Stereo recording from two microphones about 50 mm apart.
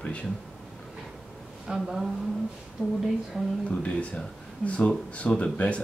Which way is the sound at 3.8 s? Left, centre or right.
Left.